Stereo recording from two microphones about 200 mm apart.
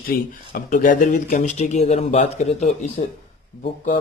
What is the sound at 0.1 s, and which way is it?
Speech, 45° left (ahead or behind).